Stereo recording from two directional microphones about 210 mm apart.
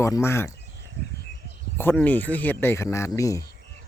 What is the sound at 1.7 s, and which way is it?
Speech, 10° left (ahead or behind).